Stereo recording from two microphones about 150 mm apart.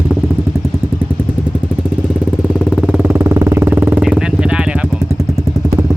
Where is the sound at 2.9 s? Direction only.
10° right (ahead or behind).